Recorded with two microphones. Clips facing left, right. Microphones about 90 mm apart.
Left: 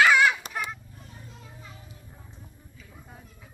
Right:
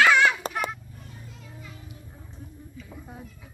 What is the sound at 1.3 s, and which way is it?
Children playing, 30° left (ahead or behind).